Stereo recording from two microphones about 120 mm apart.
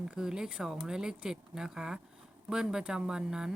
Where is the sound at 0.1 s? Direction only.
5° right (ahead or behind).